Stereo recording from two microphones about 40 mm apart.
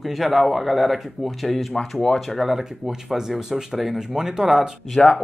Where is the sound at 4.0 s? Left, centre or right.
Centre.